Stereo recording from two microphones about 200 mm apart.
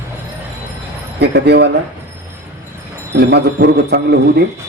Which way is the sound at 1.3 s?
55° right (ahead or behind).